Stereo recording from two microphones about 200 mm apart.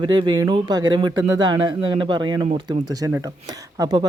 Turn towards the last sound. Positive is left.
turn(degrees=-20)  # may be behind; listen again after turning